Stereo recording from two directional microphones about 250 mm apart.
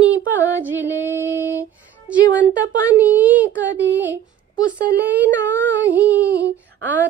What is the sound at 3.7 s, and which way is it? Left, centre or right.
Music, right.